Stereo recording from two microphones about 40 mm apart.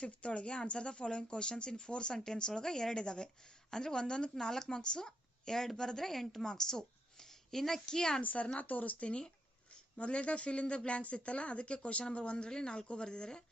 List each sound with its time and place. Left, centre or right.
0.0 s a woman's voice: left
8.2 s speech: left
9.0 s speech: left